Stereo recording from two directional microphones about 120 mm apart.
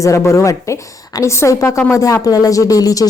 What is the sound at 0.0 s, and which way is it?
A woman's voice, 25° left (ahead or behind).